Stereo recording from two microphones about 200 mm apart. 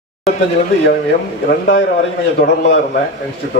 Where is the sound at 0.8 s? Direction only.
55° left (ahead or behind).